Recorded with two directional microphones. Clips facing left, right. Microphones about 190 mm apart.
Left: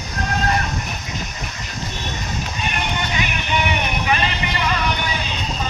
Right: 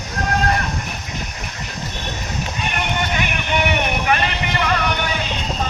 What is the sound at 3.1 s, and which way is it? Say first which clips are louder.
Music: right 1 dB; 55° right (ahead or behind).